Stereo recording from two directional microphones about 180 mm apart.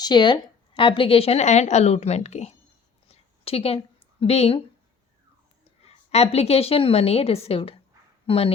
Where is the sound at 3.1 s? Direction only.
35° left (ahead or behind).